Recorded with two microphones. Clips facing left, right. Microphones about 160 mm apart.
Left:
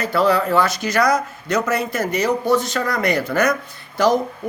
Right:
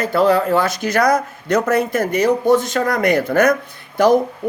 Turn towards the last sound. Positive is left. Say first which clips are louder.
# right 3 dB
turn(degrees=-55)  # may be behind; listen again after turning